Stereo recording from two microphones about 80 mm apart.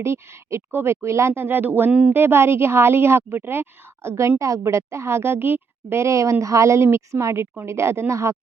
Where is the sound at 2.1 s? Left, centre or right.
Right.